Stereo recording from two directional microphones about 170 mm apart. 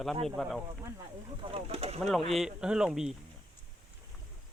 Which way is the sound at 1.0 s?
30° right (ahead or behind).